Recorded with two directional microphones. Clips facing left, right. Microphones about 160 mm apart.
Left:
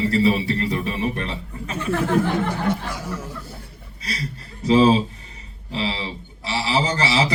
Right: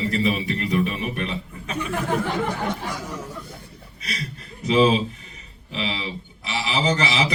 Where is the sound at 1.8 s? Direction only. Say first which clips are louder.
Left 3 dB; 15° right (ahead or behind).